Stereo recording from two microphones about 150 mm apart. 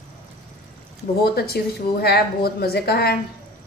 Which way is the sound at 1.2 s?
90° left.